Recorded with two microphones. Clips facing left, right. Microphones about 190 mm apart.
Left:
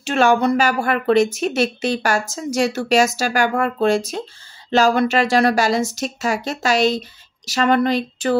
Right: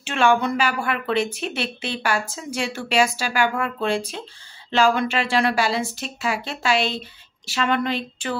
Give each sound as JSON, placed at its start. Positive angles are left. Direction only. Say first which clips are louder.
{"t": 0.0, "sound": "a woman's voice", "louder": "left 4 dB", "side_deg": 40}